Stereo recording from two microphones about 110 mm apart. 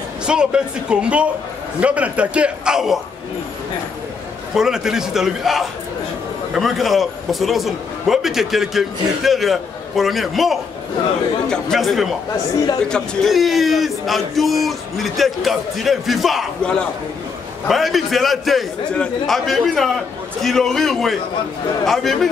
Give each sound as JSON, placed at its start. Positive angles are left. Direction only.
{"t": 0.3, "sound": "a man's voice", "side_deg": -10}
{"t": 4.6, "sound": "a man's voice", "side_deg": -5}